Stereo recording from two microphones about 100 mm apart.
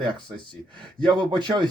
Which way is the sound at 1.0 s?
45° right (ahead or behind).